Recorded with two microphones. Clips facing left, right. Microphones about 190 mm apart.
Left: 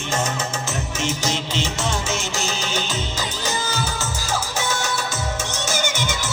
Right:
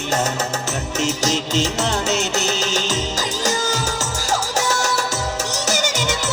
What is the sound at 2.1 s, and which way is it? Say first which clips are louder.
Music: right 5 dB; 70° right (ahead or behind).